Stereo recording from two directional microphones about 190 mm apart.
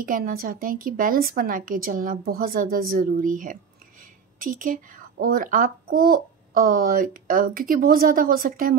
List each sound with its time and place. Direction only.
0.0 s a child's voice: 50° right (ahead or behind)